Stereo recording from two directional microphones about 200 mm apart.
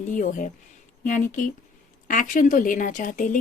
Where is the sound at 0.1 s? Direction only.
40° left (ahead or behind).